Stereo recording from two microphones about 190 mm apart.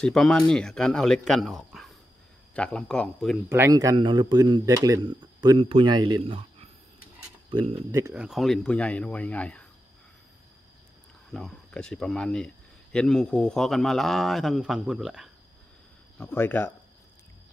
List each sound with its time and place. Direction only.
0.0 s a man's voice: centre (ahead or behind)
3.4 s speech: 15° right (ahead or behind)
8.1 s speech: 5° right (ahead or behind)
11.3 s a man's voice: 5° left (ahead or behind)
16.2 s speech: 10° left (ahead or behind)